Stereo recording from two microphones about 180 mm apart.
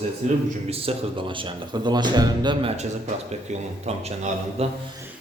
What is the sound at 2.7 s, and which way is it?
Speech, 40° right (ahead or behind).